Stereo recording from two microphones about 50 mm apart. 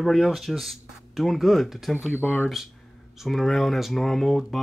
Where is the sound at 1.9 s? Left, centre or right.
Left.